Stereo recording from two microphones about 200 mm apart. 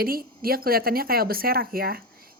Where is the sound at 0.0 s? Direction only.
45° right (ahead or behind).